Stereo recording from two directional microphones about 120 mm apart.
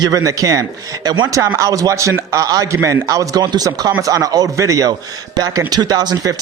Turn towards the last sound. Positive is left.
turn(degrees=-35)  # may be behind; listen again after turning